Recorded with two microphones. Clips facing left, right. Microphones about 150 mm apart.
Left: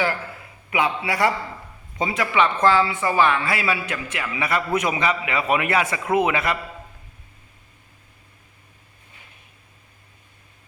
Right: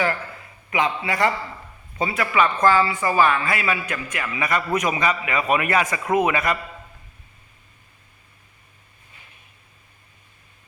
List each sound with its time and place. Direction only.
0.7 s a man's voice: 10° left (ahead or behind)
2.6 s a woman's voice: 5° left (ahead or behind)